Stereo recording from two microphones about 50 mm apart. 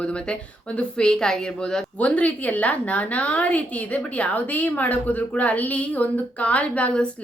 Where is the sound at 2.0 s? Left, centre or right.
Left.